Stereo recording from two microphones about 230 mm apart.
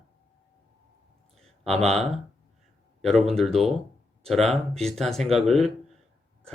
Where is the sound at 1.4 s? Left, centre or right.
Right.